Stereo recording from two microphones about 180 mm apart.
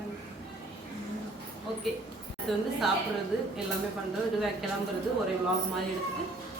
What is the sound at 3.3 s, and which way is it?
Dishes, 5° right (ahead or behind).